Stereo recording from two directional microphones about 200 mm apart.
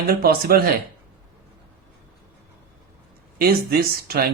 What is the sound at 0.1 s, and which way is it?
Speech, 50° right (ahead or behind).